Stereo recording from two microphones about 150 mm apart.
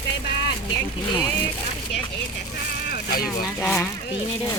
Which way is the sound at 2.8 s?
85° left.